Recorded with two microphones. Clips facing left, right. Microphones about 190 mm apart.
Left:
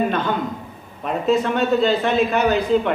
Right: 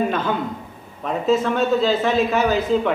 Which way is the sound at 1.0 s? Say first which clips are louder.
Even; centre (ahead or behind).